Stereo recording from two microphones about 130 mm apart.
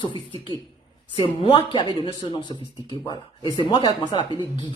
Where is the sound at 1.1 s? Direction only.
45° left (ahead or behind).